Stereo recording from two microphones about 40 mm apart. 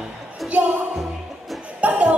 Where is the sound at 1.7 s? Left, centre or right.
Right.